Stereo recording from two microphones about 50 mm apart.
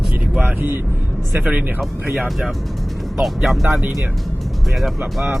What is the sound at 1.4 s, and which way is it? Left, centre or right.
Speech, right.